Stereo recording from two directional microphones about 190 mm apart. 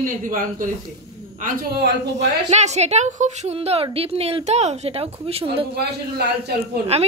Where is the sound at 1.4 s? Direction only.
55° right (ahead or behind).